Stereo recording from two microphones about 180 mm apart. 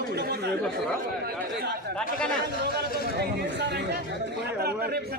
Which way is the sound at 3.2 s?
70° right (ahead or behind).